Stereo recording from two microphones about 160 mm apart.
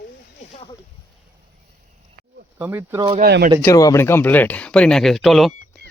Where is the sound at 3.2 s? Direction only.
75° right (ahead or behind).